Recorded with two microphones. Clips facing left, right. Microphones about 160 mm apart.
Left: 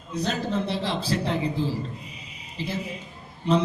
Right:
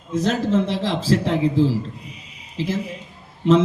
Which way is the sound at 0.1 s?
90° right.